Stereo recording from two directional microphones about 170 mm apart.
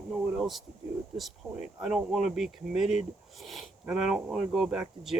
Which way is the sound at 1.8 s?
Centre (ahead or behind).